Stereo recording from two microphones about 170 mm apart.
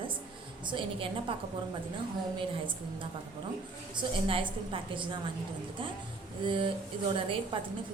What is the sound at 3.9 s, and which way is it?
A woman's voice, 30° right (ahead or behind).